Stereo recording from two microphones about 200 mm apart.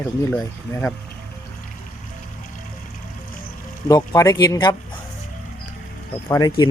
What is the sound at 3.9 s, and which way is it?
Speech, 15° left (ahead or behind).